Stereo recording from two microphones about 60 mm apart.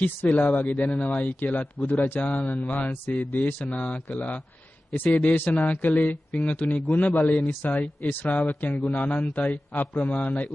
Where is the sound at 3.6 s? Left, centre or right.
Left.